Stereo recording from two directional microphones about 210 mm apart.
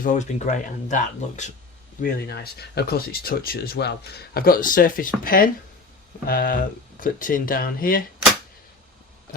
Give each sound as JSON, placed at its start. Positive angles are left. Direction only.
{"t": 0.0, "sound": "speech", "side_deg": 35}
{"t": 2.0, "sound": "speech", "side_deg": 45}